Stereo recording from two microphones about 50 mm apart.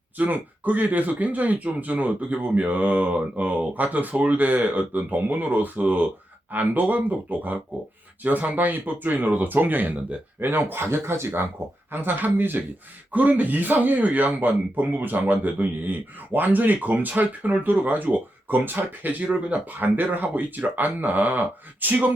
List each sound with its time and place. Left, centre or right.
0.2 s a man's voice: right
10.4 s speech: right
11.9 s a man's voice: right